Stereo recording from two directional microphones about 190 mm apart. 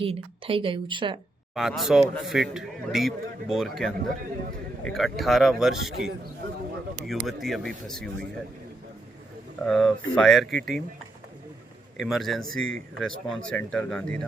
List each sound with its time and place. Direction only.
0.0 s speech: 30° right (ahead or behind)
1.5 s a man's voice: centre (ahead or behind)
7.1 s a man's voice: centre (ahead or behind)
9.6 s a man's voice: 5° left (ahead or behind)
11.9 s a man's voice: centre (ahead or behind)